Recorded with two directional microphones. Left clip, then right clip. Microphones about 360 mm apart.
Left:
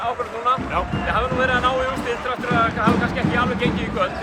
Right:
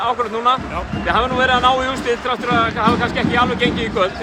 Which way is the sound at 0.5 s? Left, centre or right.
Centre.